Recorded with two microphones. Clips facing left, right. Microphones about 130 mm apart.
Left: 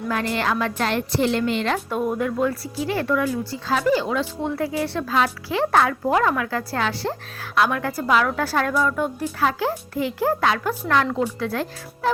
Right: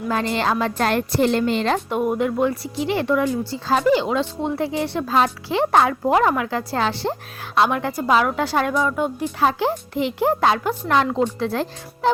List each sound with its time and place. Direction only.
0.1 s a child's voice: 30° right (ahead or behind)
0.8 s a woman's voice: 45° right (ahead or behind)
1.9 s speech: 10° right (ahead or behind)
2.1 s a child's voice: 20° right (ahead or behind)